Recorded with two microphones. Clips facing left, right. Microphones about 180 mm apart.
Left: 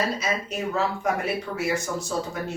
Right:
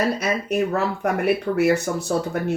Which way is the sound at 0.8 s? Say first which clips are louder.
Right 3 dB; 60° right (ahead or behind).